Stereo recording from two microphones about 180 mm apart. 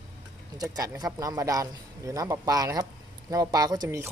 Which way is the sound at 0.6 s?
20° right (ahead or behind).